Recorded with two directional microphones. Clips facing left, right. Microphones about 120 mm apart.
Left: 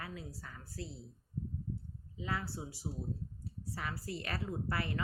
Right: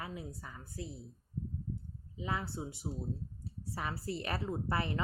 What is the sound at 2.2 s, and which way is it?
Speech, 20° right (ahead or behind).